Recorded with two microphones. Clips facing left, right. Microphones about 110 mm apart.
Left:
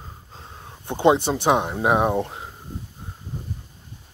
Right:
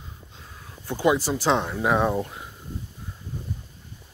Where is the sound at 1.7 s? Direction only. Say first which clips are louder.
Left 2 dB; 20° left (ahead or behind).